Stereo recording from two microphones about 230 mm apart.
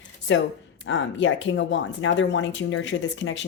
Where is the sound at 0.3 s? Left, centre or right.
Left.